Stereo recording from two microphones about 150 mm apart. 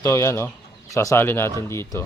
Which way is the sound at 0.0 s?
20° left (ahead or behind).